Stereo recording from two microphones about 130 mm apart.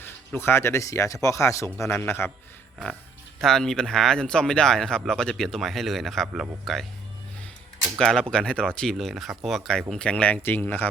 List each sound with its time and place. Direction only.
0.3 s speech: 20° left (ahead or behind)
3.4 s speech: 5° left (ahead or behind)
7.9 s speech: 5° left (ahead or behind)